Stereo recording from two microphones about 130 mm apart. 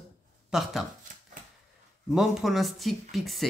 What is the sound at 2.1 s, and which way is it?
Speech, 5° right (ahead or behind).